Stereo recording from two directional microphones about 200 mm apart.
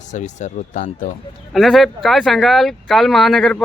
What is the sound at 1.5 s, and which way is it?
A man's voice, centre (ahead or behind).